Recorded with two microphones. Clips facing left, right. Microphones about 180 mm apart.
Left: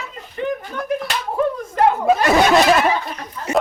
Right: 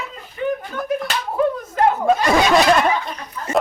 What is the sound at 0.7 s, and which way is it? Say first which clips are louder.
Slap: even; centre (ahead or behind).